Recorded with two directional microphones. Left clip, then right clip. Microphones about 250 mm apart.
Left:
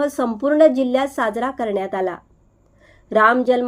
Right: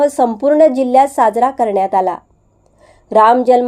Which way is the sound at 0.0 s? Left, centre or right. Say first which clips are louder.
Right 8 dB; centre.